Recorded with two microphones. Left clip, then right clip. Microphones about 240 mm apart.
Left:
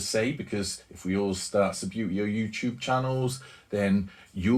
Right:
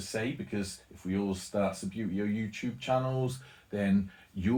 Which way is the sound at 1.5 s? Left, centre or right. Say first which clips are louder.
Left 6 dB; left.